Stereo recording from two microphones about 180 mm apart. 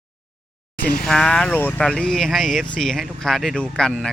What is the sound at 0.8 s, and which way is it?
Speech, 55° left (ahead or behind).